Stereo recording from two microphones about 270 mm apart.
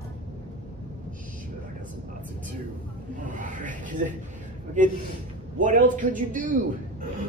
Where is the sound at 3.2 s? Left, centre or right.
Right.